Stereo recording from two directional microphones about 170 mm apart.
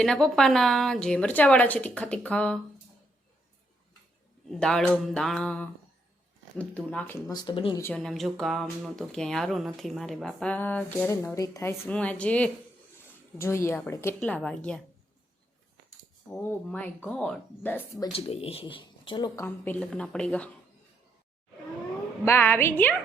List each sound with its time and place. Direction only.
0.0 s speech: 5° left (ahead or behind)
4.6 s a woman's voice: centre (ahead or behind)
7.3 s speech: 25° left (ahead or behind)
7.9 s a woman's voice: centre (ahead or behind)
16.3 s a woman's voice: 10° left (ahead or behind)
18.1 s speech: 35° left (ahead or behind)
19.4 s a woman's voice: 10° left (ahead or behind)
22.2 s a woman's voice: 15° left (ahead or behind)